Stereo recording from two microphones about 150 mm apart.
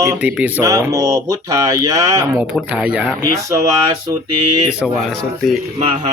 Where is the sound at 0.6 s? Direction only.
25° right (ahead or behind).